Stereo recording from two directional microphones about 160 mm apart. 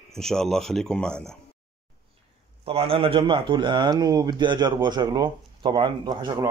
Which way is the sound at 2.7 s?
35° right (ahead or behind).